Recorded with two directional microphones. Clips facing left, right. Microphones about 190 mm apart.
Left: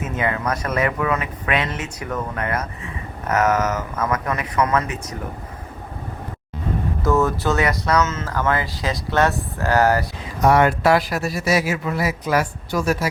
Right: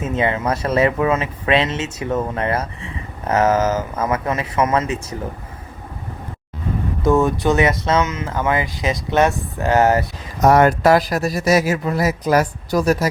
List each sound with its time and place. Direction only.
0.0 s speech: 25° right (ahead or behind)
7.0 s speech: 15° right (ahead or behind)
10.4 s speech: 40° right (ahead or behind)